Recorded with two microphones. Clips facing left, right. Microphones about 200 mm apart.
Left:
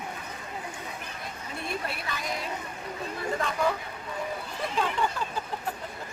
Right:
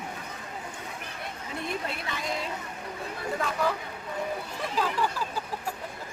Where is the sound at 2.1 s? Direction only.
25° right (ahead or behind).